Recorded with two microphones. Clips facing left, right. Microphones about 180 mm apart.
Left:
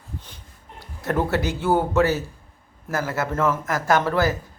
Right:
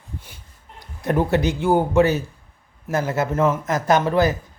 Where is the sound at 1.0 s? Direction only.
15° right (ahead or behind).